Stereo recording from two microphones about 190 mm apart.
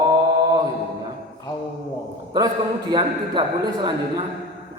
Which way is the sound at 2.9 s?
20° right (ahead or behind).